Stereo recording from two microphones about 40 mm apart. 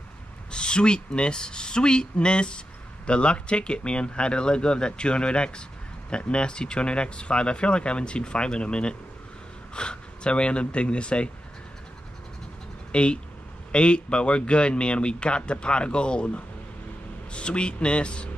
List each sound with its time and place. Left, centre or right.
0.5 s speech: left
12.9 s speech: left